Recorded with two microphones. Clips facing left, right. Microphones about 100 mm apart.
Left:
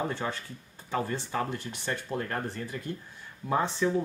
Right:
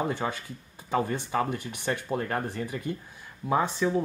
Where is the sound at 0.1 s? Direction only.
15° right (ahead or behind).